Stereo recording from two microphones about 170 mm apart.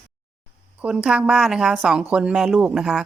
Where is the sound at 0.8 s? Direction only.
5° right (ahead or behind).